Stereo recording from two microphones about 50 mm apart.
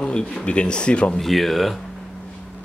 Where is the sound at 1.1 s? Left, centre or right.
Centre.